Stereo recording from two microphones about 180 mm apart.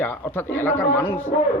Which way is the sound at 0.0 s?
10° left (ahead or behind).